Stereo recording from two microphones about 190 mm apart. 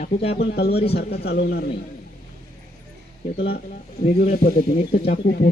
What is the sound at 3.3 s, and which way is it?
Speech, 60° left (ahead or behind).